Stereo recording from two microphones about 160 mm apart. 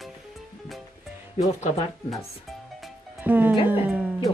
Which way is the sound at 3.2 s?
10° right (ahead or behind).